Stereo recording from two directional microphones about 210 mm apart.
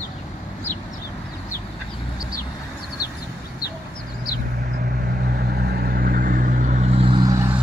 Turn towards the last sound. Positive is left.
turn(degrees=-15)  # may be behind; listen again after turning